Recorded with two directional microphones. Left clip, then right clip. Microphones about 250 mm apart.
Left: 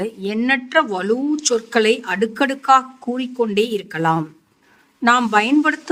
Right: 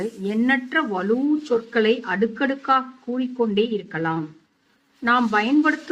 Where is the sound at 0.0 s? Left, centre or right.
Left.